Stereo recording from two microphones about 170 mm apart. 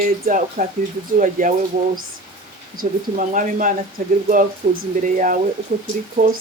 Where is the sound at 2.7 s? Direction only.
50° right (ahead or behind).